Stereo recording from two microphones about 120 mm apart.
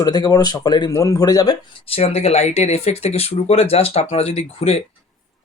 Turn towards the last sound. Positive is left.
turn(degrees=60)  # may be behind; listen again after turning